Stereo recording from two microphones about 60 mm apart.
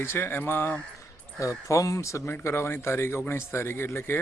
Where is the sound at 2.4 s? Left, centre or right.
Left.